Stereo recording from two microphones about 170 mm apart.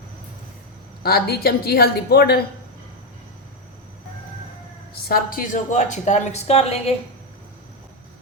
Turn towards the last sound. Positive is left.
turn(degrees=40)  # may be behind; listen again after turning